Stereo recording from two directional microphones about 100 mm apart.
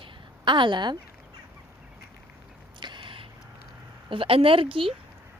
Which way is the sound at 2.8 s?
50° right (ahead or behind).